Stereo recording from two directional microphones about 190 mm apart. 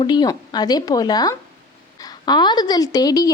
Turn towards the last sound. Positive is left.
turn(degrees=20)  # may be behind; listen again after turning